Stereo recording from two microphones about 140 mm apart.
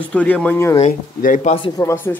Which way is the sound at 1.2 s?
65° left (ahead or behind).